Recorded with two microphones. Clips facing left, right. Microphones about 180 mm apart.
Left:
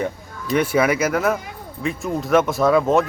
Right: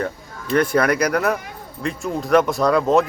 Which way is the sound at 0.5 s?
5° left (ahead or behind).